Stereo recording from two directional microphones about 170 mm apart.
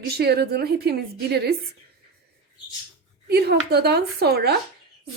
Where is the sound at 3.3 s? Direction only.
70° right (ahead or behind).